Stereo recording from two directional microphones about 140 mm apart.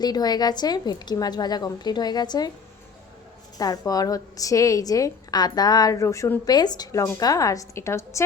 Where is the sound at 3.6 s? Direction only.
25° left (ahead or behind).